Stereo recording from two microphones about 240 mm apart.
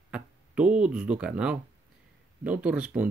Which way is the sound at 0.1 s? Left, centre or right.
Centre.